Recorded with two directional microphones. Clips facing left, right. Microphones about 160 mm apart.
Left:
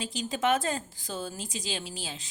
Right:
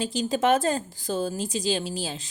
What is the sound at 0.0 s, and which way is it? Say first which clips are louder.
A woman's voice: right 5 dB; 40° right (ahead or behind).